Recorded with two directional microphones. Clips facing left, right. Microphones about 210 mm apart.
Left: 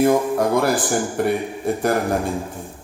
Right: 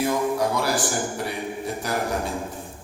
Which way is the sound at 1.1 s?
55° left (ahead or behind).